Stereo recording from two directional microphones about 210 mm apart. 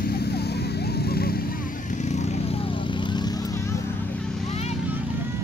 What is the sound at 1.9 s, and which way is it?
Vehicle, 35° left (ahead or behind).